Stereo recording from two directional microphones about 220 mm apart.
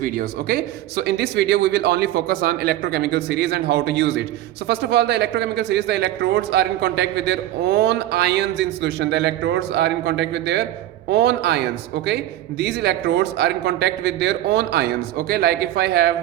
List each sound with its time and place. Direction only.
0.0 s speech: 40° right (ahead or behind)